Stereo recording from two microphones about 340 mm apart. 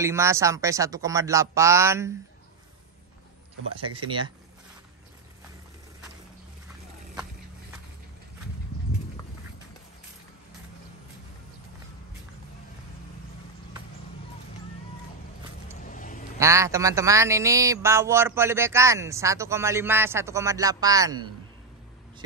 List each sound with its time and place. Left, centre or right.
0.0 s speech: centre
3.7 s speech: centre
15.8 s a sound: left
16.3 s speech: centre